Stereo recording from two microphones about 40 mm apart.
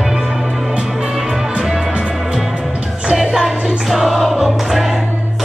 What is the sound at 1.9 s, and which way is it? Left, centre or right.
Music, right.